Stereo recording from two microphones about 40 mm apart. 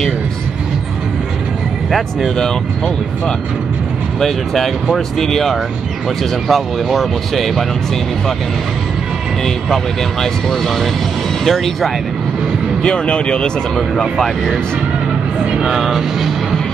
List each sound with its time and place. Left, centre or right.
1.9 s speech: centre
4.2 s speech: centre
10.2 s speech: centre
12.8 s speech: left
14.2 s speech: centre
15.7 s speech: centre